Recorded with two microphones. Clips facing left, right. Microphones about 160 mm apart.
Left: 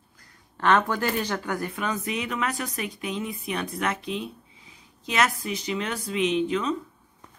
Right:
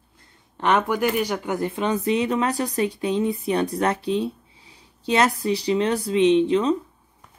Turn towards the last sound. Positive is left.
turn(degrees=-30)  # may be behind; listen again after turning